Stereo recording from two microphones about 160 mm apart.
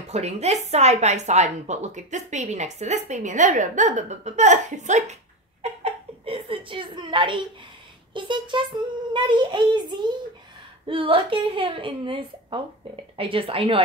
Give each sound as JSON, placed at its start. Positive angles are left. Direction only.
{"t": 0.1, "sound": "a woman's voice", "side_deg": -45}